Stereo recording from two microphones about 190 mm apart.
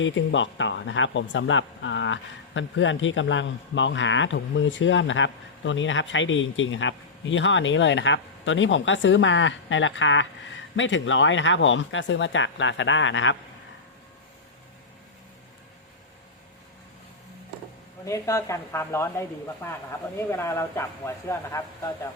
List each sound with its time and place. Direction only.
0.0 s speech: 75° left (ahead or behind)
18.0 s speech: 15° left (ahead or behind)